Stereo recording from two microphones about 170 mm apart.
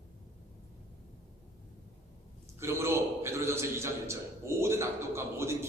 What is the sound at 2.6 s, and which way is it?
A man's voice, 15° right (ahead or behind).